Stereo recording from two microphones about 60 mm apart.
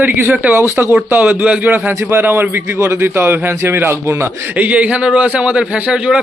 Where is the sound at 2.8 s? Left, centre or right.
Right.